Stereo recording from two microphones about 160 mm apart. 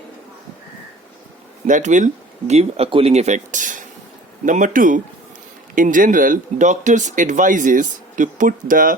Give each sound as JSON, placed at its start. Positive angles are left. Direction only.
{"t": 1.6, "sound": "speech", "side_deg": -50}